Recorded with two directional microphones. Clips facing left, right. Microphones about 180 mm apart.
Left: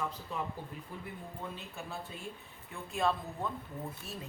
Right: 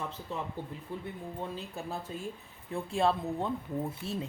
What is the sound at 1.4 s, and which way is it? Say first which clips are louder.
Speech: right 6 dB; 35° right (ahead or behind).